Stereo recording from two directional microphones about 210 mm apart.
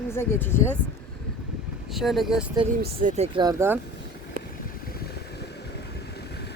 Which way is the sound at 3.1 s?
30° right (ahead or behind).